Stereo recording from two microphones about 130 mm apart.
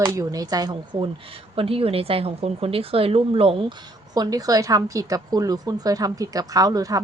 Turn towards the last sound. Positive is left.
turn(degrees=-30)  # may be behind; listen again after turning